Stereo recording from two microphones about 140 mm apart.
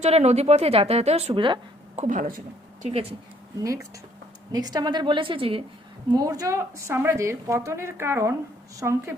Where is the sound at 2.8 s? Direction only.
45° right (ahead or behind).